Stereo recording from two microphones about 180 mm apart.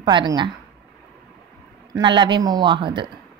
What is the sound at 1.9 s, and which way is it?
A woman's voice, 25° right (ahead or behind).